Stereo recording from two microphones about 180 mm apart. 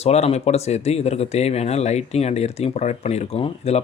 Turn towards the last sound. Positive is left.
turn(degrees=35)  # may be behind; listen again after turning